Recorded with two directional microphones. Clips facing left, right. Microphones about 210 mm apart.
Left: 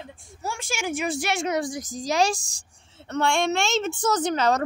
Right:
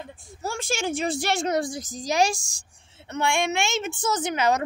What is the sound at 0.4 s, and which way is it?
A woman's voice, 30° right (ahead or behind).